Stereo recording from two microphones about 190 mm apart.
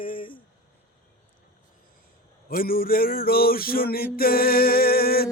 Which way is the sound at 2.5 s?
50° left (ahead or behind).